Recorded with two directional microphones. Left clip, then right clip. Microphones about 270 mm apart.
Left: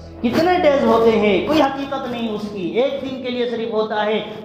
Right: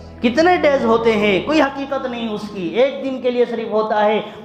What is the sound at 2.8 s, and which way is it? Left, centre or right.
A woman's voice, right.